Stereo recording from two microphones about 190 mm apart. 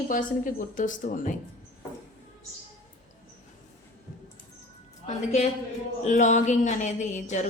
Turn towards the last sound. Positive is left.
turn(degrees=40)  # may be behind; listen again after turning